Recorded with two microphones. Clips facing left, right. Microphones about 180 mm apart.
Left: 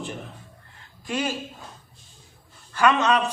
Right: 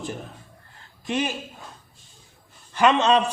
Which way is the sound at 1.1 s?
20° right (ahead or behind).